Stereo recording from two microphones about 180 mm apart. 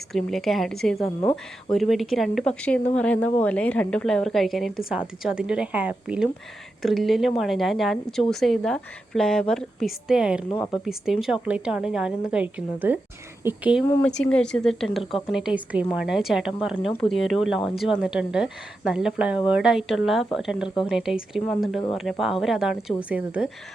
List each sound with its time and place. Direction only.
0.1 s speech: centre (ahead or behind)
1.2 s speech: 25° left (ahead or behind)
1.7 s speech: centre (ahead or behind)
13.8 s speech: 10° left (ahead or behind); by 23.5 s 5° right (ahead or behind)